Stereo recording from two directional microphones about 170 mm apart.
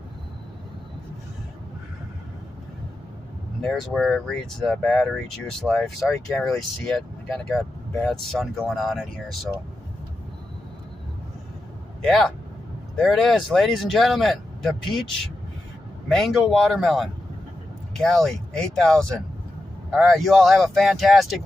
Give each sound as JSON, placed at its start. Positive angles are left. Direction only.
{"t": 3.6, "sound": "speech", "side_deg": 0}
{"t": 6.0, "sound": "speech", "side_deg": 15}
{"t": 6.9, "sound": "speech", "side_deg": 0}
{"t": 12.0, "sound": "speech", "side_deg": 0}
{"t": 16.2, "sound": "speech", "side_deg": 0}